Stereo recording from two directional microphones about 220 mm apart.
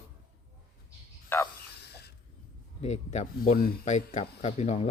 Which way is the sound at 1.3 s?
10° left (ahead or behind).